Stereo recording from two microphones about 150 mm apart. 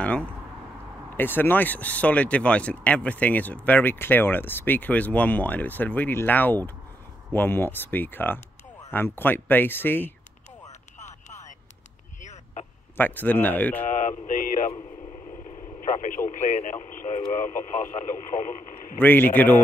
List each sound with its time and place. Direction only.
1.1 s speech: 15° left (ahead or behind)
11.0 s a sound: 50° left (ahead or behind)
12.9 s speech: 10° left (ahead or behind)
13.8 s a sound: 60° left (ahead or behind)
15.3 s radio: 60° left (ahead or behind)
16.3 s speech: 55° left (ahead or behind)
18.9 s speech: 15° left (ahead or behind)